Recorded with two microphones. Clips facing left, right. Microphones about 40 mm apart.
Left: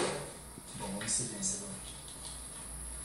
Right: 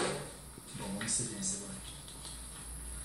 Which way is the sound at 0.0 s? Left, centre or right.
Centre.